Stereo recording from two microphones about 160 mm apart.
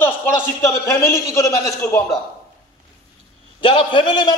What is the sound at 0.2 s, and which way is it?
A man's voice, 15° left (ahead or behind).